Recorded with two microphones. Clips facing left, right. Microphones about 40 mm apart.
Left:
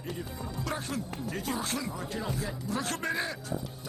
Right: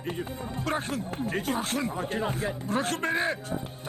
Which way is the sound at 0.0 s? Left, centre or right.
Right.